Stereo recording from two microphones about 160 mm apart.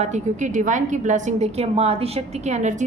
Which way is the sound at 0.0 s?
50° right (ahead or behind).